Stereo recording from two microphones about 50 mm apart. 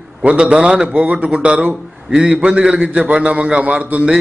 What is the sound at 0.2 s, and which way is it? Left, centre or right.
A man's voice, right.